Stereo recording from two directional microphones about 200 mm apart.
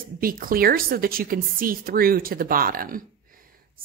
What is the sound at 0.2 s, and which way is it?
A woman's voice, 45° right (ahead or behind).